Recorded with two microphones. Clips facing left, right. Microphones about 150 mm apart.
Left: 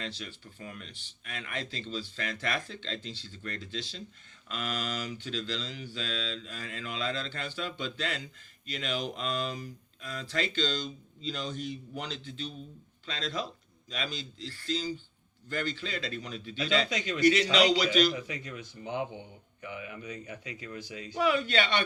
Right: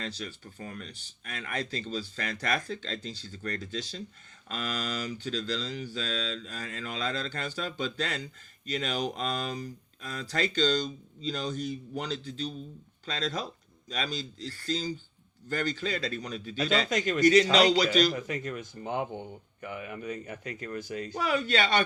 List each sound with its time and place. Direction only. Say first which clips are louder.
0.0 s speech: right 2 dB; 40° right (ahead or behind)